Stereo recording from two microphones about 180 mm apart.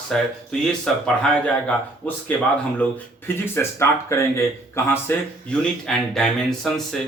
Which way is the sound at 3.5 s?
15° left (ahead or behind).